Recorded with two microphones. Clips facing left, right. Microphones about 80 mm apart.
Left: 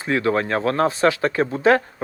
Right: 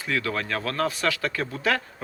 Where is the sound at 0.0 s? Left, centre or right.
Left.